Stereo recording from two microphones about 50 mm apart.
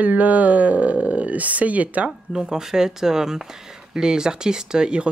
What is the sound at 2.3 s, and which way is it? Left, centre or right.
Speech, centre.